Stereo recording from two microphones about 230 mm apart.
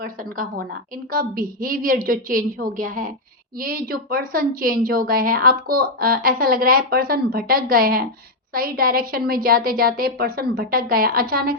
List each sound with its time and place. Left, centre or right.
0.0 s a woman's voice: right